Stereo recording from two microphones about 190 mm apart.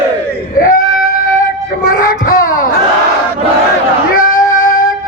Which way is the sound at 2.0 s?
45° left (ahead or behind).